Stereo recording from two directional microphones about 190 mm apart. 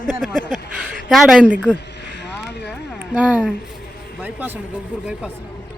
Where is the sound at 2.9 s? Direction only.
5° right (ahead or behind).